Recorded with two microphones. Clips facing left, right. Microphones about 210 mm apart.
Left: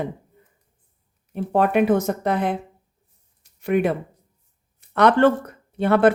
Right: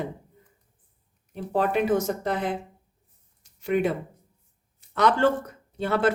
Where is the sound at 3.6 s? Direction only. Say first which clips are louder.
Left 4 dB; 60° left (ahead or behind).